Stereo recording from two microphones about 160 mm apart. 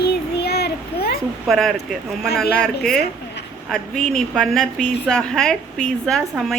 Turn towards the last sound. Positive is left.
turn(degrees=0)  # may be behind; listen again after turning